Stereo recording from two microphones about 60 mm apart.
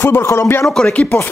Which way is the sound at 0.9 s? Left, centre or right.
Left.